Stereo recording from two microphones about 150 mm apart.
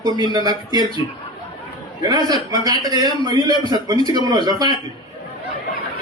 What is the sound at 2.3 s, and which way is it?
A man's voice, 25° right (ahead or behind).